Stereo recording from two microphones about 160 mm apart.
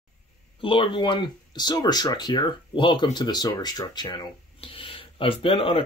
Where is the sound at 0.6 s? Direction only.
30° left (ahead or behind).